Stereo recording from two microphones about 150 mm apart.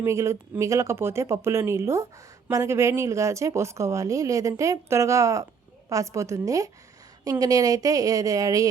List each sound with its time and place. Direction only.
0.0 s a woman's voice: 20° right (ahead or behind)